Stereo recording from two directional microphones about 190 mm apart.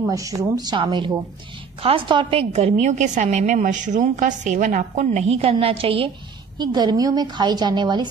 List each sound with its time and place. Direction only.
0.0 s a woman's voice: 15° right (ahead or behind)